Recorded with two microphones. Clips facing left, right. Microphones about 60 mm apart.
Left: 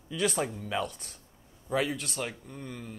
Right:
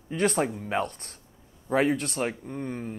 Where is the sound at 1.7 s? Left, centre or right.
Right.